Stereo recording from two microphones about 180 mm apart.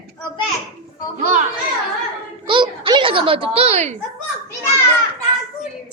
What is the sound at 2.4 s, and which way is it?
A child's voice, 25° right (ahead or behind).